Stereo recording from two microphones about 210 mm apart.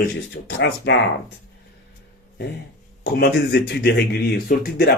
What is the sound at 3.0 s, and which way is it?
A man's voice, 50° left (ahead or behind).